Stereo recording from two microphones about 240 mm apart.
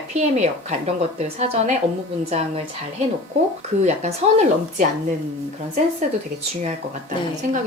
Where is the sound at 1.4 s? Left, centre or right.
Right.